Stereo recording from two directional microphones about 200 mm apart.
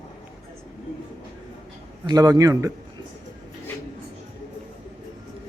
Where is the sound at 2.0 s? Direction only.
20° right (ahead or behind).